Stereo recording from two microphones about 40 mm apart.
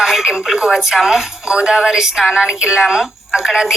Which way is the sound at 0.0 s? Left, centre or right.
Centre.